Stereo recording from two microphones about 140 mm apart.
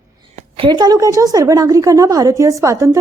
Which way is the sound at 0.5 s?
35° right (ahead or behind).